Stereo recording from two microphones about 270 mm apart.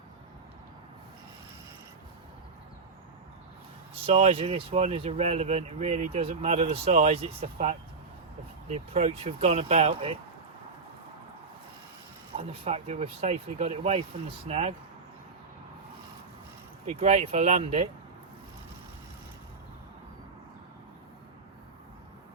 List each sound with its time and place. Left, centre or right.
4.0 s speech: right
12.4 s speech: right
16.8 s speech: right